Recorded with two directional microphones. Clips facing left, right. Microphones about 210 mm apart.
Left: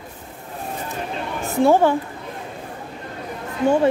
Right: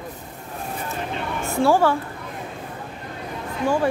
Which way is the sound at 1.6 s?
20° left (ahead or behind).